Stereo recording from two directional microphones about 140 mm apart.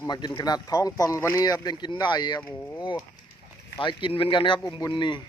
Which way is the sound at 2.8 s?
35° left (ahead or behind).